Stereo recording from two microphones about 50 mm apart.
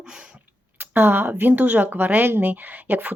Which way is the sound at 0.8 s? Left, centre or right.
Right.